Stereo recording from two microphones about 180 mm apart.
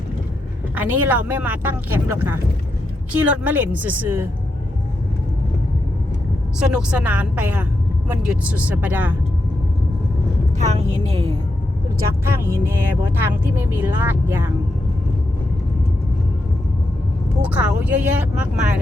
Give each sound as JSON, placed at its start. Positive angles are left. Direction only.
{"t": 0.8, "sound": "speech", "side_deg": -10}
{"t": 6.6, "sound": "speech", "side_deg": -5}
{"t": 10.6, "sound": "a woman's voice", "side_deg": -40}
{"t": 12.2, "sound": "speech", "side_deg": -15}
{"t": 17.4, "sound": "speech", "side_deg": -10}